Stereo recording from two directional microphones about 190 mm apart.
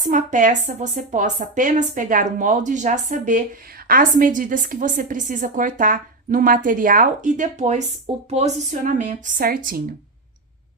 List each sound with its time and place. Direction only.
0.1 s a woman's voice: 40° right (ahead or behind)